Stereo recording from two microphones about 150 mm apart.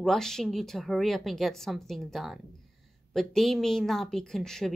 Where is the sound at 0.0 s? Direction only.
5° left (ahead or behind).